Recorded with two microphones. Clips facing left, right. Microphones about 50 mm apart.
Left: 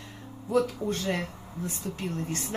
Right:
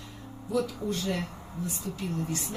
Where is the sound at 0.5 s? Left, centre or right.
Left.